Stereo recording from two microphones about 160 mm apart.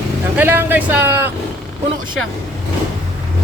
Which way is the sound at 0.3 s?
15° right (ahead or behind).